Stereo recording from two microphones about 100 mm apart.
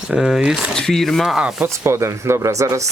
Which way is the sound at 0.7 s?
5° left (ahead or behind).